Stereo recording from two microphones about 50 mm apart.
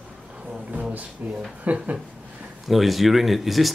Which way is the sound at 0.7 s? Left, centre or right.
Right.